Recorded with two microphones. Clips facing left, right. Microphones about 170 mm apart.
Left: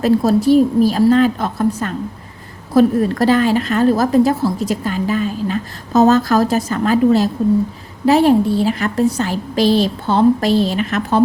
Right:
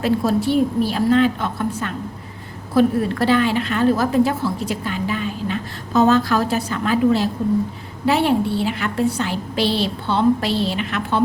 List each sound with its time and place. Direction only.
0.0 s a woman's voice: 40° left (ahead or behind)